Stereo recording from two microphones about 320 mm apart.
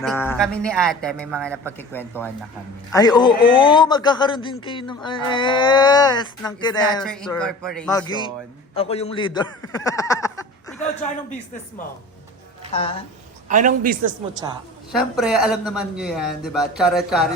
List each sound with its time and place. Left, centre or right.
0.0 s speech: centre
7.9 s a man's voice: centre
12.7 s speech: centre
13.5 s a man's voice: right
14.9 s speech: centre